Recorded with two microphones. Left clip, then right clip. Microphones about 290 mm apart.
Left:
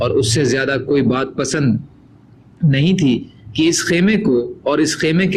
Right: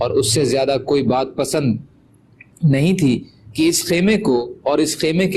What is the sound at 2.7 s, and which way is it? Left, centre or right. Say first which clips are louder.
A man's voice: left 1 dB; centre.